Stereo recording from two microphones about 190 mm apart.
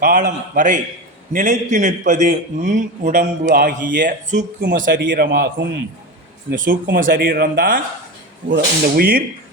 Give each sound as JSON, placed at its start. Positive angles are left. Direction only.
{"t": 0.0, "sound": "a man's voice", "side_deg": -45}